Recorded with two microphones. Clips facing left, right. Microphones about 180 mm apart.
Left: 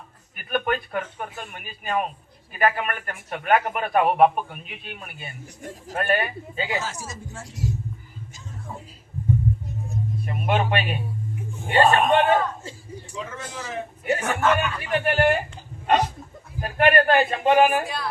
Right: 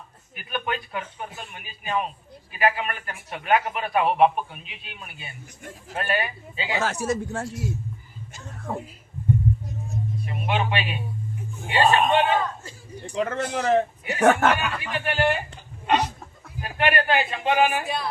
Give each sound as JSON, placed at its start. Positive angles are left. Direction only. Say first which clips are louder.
{"t": 0.3, "sound": "a man's voice", "louder": "left 5 dB", "side_deg": 50}
{"t": 6.7, "sound": "speech", "louder": "right 6 dB", "side_deg": -65}
{"t": 8.3, "sound": "music", "louder": "right 7 dB", "side_deg": -65}
{"t": 10.2, "sound": "a man's voice", "louder": "left 3 dB", "side_deg": 50}
{"t": 13.1, "sound": "speech", "louder": "right 9 dB", "side_deg": -70}
{"t": 14.2, "sound": "speech", "louder": "right 8 dB", "side_deg": -60}
{"t": 14.8, "sound": "a man's voice", "louder": "left 4 dB", "side_deg": 45}
{"t": 16.6, "sound": "a man's voice", "louder": "left 5 dB", "side_deg": 45}
{"t": 17.8, "sound": "music", "louder": "right 2 dB", "side_deg": -20}